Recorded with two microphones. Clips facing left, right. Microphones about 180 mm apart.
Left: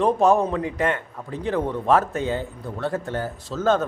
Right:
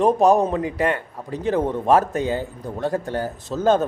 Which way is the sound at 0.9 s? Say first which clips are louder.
Right 2 dB; 40° right (ahead or behind).